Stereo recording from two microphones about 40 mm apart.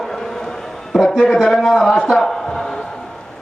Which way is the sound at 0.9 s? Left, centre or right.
Centre.